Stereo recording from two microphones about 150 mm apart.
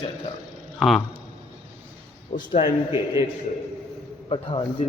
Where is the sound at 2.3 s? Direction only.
30° left (ahead or behind).